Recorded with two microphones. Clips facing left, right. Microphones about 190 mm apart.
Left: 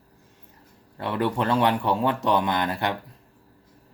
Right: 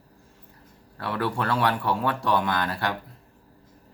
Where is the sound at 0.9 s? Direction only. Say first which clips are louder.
Left 3 dB; 20° left (ahead or behind).